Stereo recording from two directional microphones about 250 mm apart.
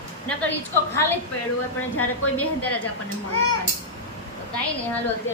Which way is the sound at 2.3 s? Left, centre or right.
Left.